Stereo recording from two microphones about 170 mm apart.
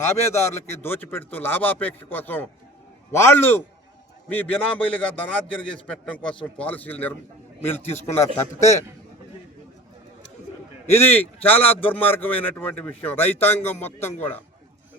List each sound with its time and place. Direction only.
0.3 s a man's voice: 15° left (ahead or behind)
7.9 s a man's voice: 40° left (ahead or behind)
10.8 s a man's voice: 15° left (ahead or behind)